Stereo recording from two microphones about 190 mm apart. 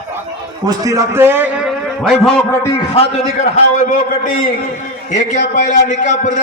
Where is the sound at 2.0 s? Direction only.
5° left (ahead or behind).